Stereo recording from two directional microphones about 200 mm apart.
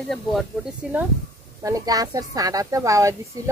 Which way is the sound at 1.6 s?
15° right (ahead or behind).